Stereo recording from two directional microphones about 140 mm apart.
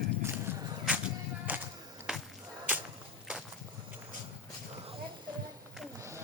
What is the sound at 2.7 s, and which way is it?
Whip, 10° right (ahead or behind).